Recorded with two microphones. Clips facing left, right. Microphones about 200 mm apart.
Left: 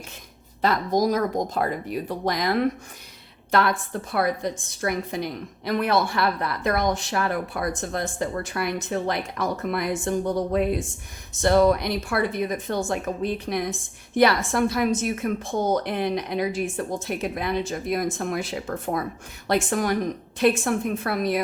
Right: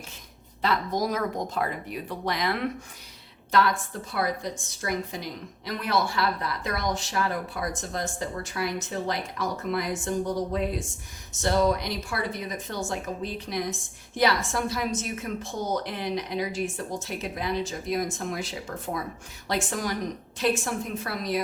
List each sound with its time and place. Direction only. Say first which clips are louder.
0.6 s speech: left 5 dB; 40° left (ahead or behind)
3.5 s a woman's voice: left 2 dB; 55° left (ahead or behind)